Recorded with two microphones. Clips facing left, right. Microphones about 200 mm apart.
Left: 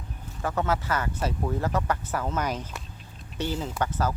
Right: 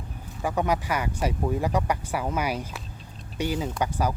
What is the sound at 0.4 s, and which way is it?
Speech, 15° right (ahead or behind).